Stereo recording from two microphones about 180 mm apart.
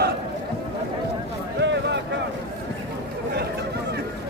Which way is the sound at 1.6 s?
75° right (ahead or behind).